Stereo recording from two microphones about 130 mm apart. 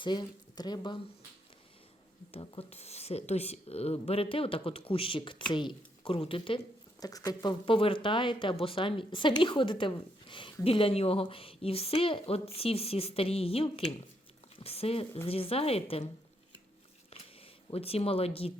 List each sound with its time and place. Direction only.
0.0 s speech: 35° left (ahead or behind)
2.3 s speech: 50° left (ahead or behind)
7.0 s speech: 30° left (ahead or behind); by 16.0 s 50° left (ahead or behind)
17.7 s speech: 50° left (ahead or behind)